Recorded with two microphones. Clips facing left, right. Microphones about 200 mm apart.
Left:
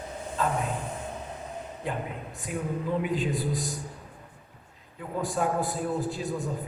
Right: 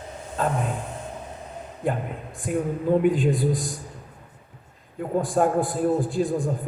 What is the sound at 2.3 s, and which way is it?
A man's voice, 50° right (ahead or behind).